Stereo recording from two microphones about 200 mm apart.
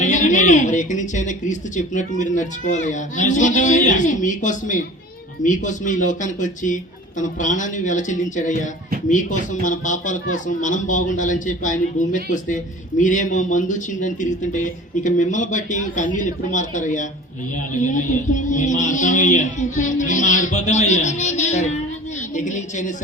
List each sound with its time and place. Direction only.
0.0 s speech: 40° left (ahead or behind)